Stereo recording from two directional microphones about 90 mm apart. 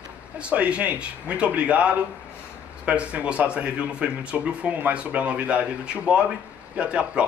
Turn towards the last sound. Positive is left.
turn(degrees=-10)  # may be behind; listen again after turning